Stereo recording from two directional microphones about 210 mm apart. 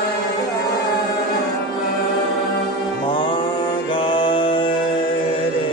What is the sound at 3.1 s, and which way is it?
Music, 25° left (ahead or behind).